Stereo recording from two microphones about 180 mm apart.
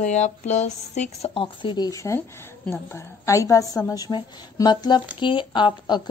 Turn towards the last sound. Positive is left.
turn(degrees=25)  # may be behind; listen again after turning